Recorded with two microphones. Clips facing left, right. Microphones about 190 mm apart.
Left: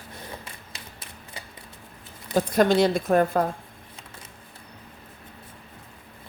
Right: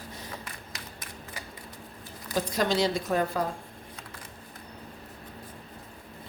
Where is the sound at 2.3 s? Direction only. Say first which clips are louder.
Left 7 dB; 55° left (ahead or behind).